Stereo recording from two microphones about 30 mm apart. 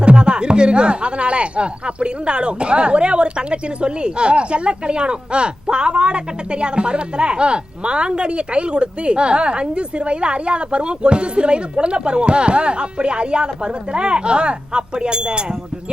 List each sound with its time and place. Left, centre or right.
0.0 s speech: right